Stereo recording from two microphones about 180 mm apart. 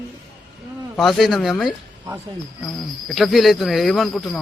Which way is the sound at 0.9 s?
Centre (ahead or behind).